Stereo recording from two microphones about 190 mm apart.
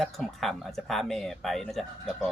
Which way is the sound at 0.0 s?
Centre (ahead or behind).